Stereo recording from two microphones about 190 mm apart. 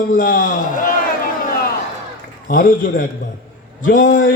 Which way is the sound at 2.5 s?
45° left (ahead or behind).